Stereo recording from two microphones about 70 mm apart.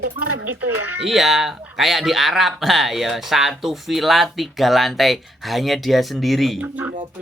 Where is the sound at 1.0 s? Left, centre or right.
Centre.